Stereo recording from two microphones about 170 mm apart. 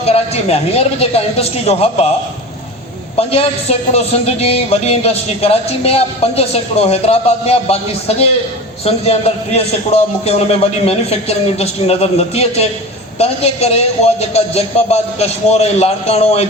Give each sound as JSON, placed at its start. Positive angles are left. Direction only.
{"t": 0.0, "sound": "a man's voice", "side_deg": 35}
{"t": 3.2, "sound": "a man's voice", "side_deg": 35}